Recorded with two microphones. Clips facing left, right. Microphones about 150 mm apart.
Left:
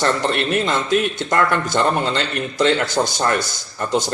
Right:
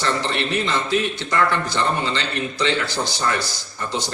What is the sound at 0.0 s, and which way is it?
Speech, 50° left (ahead or behind).